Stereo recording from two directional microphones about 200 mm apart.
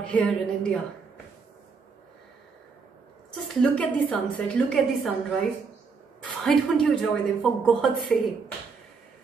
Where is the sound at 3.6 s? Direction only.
5° left (ahead or behind).